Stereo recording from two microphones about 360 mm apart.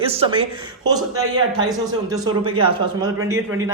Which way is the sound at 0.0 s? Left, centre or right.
Centre.